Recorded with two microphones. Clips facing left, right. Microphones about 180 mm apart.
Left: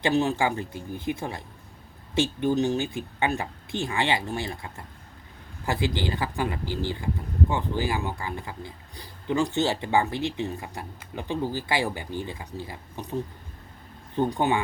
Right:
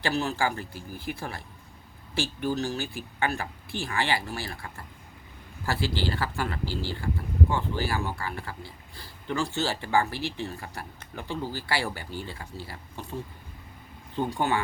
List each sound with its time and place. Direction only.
0.0 s speech: 20° left (ahead or behind)